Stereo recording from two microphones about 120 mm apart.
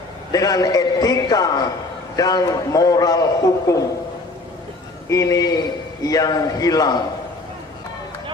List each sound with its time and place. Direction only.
0.3 s a man's voice: 30° left (ahead or behind)
5.0 s a man's voice: 25° left (ahead or behind)